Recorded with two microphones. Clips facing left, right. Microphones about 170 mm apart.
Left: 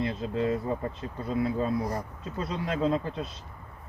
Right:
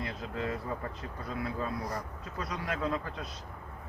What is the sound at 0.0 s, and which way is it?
Speech, 25° left (ahead or behind).